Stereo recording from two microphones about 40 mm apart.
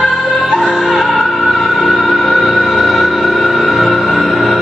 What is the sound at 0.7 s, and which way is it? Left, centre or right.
Music, centre.